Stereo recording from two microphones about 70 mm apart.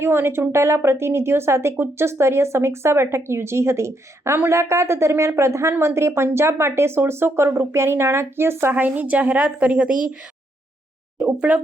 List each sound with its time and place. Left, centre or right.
0.0 s speech: right
8.7 s a woman's voice: right
11.2 s speech: centre